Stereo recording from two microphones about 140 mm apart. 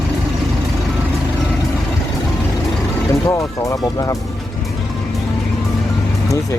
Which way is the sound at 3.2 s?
25° left (ahead or behind).